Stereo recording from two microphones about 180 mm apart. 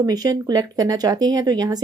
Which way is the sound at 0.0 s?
20° right (ahead or behind).